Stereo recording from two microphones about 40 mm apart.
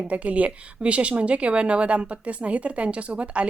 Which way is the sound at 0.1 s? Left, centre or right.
Right.